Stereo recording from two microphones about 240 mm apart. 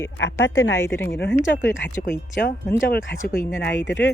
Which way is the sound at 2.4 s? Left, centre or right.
Left.